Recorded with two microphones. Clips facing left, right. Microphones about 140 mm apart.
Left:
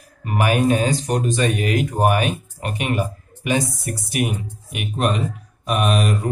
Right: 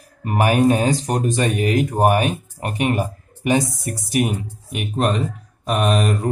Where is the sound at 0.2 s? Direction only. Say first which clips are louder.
Right 2 dB; 35° right (ahead or behind).